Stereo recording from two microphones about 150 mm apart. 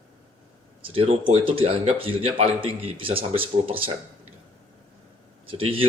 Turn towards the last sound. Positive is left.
turn(degrees=-35)  # may be behind; listen again after turning